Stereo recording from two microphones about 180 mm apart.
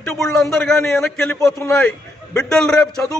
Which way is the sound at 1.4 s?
15° left (ahead or behind).